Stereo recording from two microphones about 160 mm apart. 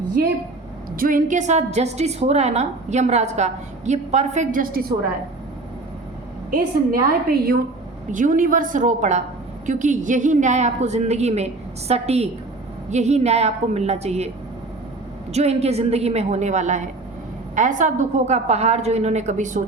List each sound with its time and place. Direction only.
0.2 s a woman's voice: 65° right (ahead or behind)
7.3 s a woman's voice: 70° right (ahead or behind)
8.1 s a woman's voice: 55° right (ahead or behind)
15.3 s a woman's voice: 40° right (ahead or behind)